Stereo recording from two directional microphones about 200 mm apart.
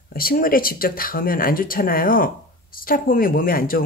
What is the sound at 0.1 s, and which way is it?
Speech, 45° left (ahead or behind).